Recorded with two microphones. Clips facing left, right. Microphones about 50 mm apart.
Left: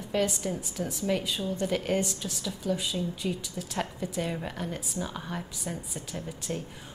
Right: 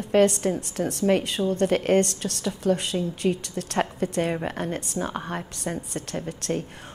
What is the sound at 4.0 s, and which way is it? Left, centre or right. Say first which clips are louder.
A woman's voice: right 7 dB; right.